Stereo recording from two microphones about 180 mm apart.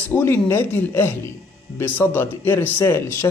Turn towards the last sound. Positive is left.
turn(degrees=15)  # may be behind; listen again after turning